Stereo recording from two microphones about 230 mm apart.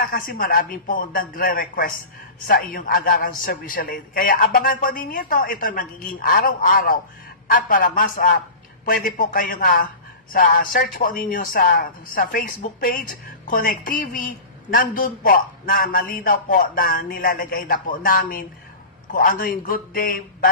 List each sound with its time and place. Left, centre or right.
0.0 s speech: left